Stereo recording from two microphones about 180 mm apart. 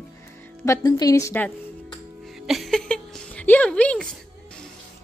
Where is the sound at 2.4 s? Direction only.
Centre (ahead or behind).